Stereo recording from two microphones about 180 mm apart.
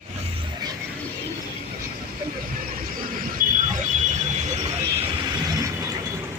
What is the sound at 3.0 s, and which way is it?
Vehicle, 50° right (ahead or behind).